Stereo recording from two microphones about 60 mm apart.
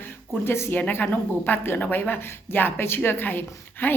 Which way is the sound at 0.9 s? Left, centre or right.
Left.